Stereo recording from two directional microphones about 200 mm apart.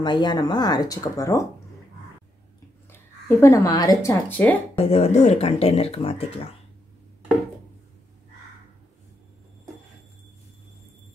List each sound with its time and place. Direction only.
0.0 s speech: 20° left (ahead or behind)
2.9 s speech: 15° left (ahead or behind)
4.7 s speech: 30° left (ahead or behind)